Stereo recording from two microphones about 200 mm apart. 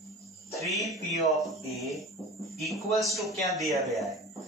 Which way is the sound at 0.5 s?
Centre (ahead or behind).